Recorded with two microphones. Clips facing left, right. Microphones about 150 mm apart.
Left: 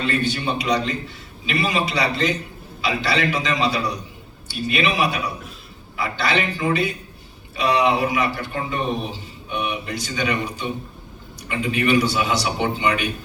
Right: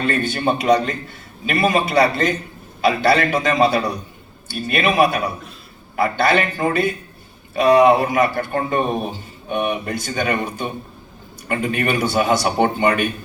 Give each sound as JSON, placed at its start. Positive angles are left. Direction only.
{"t": 0.0, "sound": "a man's voice", "side_deg": -50}